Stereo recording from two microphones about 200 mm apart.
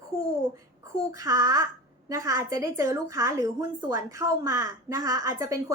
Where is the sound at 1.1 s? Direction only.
15° right (ahead or behind).